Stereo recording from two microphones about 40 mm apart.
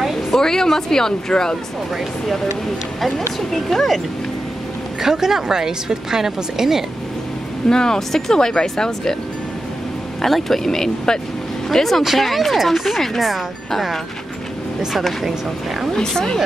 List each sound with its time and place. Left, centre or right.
0.3 s speech: centre
3.0 s speech: centre
5.0 s a woman's voice: centre
7.6 s speech: centre
10.2 s speech: centre